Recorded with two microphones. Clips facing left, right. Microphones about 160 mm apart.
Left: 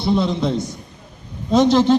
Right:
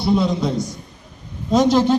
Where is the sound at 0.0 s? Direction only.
5° right (ahead or behind).